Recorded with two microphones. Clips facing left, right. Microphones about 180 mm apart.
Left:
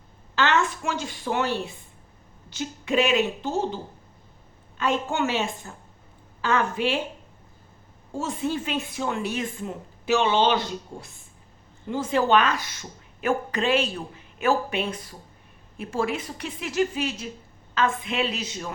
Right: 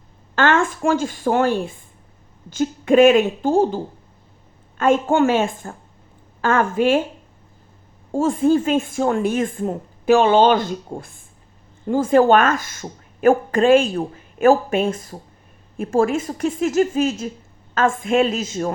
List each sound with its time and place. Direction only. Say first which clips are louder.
0.3 s a woman's voice: right 5 dB; 50° right (ahead or behind)
4.8 s a woman's voice: right 9 dB; 50° right (ahead or behind)
8.1 s a woman's voice: right 11 dB; 50° right (ahead or behind)